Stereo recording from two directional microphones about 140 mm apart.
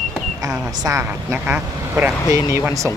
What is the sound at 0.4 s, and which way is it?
Speech, 25° right (ahead or behind).